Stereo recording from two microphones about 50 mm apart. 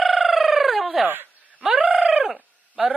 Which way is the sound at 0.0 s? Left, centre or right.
Centre.